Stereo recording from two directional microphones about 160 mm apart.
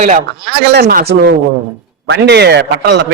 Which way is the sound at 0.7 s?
80° right.